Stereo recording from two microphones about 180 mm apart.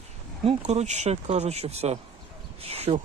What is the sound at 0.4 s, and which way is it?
Speech, 35° right (ahead or behind).